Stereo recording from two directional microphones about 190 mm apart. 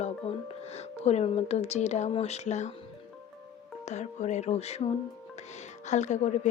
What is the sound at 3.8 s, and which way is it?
Speech, 35° left (ahead or behind).